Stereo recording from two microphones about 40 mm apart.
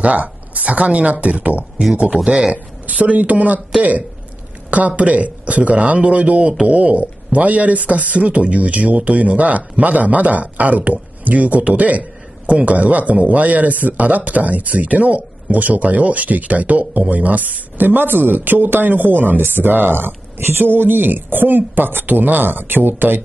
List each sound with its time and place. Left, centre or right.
0.0 s speech: right
2.2 s speech: right
2.5 s speech: right
4.6 s a man's voice: right
20.3 s speech: right